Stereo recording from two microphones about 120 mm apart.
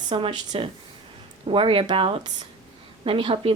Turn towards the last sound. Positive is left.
turn(degrees=-45)  # may be behind; listen again after turning